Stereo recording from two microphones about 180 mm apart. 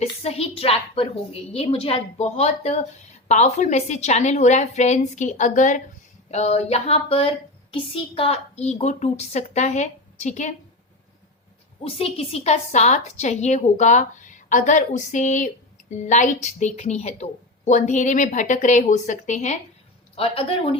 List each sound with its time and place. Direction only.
0.0 s a woman's voice: 35° left (ahead or behind)
11.8 s a woman's voice: 35° left (ahead or behind)